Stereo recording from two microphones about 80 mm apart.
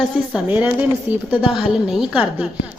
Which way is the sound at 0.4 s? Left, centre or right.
Right.